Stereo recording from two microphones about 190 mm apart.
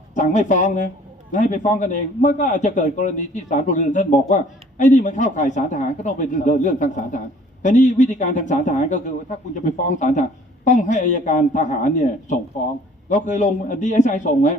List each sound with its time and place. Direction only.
0.1 s a man's voice: 40° left (ahead or behind)